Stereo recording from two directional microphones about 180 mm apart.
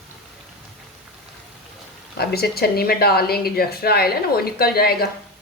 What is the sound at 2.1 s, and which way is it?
A woman's voice, 60° left (ahead or behind).